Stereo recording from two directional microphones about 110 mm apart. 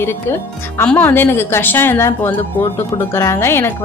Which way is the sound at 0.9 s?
20° left (ahead or behind).